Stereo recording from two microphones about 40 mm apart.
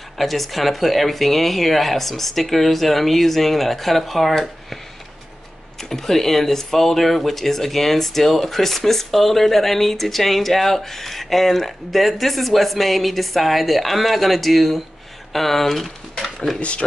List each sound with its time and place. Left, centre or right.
0.2 s speech: centre
5.8 s speech: centre
16.2 s a sound: centre
16.5 s speech: left